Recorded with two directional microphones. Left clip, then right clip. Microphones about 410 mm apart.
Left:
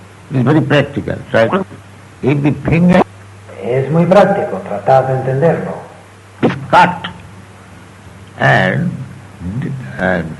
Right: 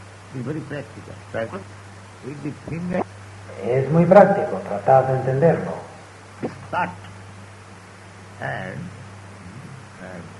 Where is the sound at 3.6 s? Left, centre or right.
Right.